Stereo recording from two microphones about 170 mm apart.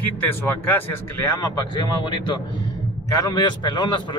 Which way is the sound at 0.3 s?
15° left (ahead or behind).